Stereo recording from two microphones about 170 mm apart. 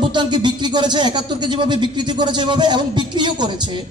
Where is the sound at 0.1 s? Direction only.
25° right (ahead or behind).